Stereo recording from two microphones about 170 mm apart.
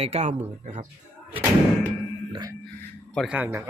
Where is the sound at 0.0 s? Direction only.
40° right (ahead or behind).